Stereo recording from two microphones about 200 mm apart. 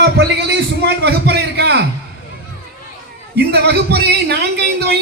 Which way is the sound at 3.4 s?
55° right (ahead or behind).